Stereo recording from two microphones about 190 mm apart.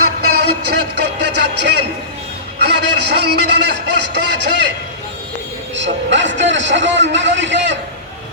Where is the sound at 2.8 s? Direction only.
65° right (ahead or behind).